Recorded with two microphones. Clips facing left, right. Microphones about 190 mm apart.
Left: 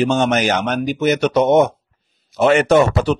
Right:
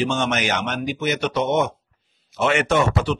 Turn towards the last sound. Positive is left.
turn(degrees=40)  # may be behind; listen again after turning